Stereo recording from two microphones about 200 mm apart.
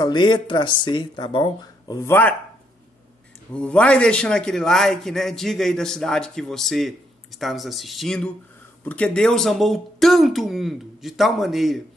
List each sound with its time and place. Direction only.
0.0 s speech: 20° left (ahead or behind)
3.5 s a man's voice: 5° left (ahead or behind)